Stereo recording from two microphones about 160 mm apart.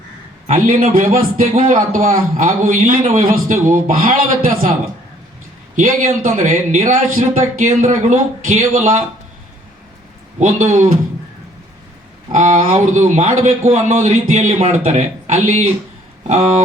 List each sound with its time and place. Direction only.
0.4 s a man's voice: 55° right (ahead or behind)
5.7 s a man's voice: 55° right (ahead or behind)
12.3 s a man's voice: 50° right (ahead or behind)